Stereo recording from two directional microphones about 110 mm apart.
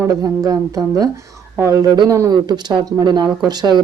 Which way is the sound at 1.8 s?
35° right (ahead or behind).